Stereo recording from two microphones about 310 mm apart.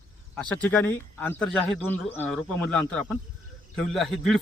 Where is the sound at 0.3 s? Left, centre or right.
Centre.